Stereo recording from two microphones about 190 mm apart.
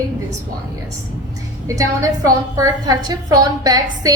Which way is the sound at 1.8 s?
20° right (ahead or behind).